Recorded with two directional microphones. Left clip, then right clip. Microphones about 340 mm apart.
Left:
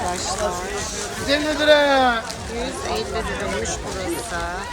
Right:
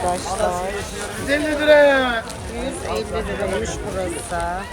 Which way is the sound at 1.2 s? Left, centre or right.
Centre.